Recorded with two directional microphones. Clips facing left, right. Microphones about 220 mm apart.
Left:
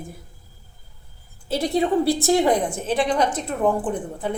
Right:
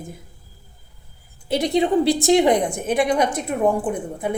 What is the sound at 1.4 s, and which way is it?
A woman's voice, 15° right (ahead or behind).